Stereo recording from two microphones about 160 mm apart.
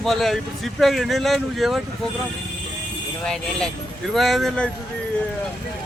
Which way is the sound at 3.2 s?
5° left (ahead or behind).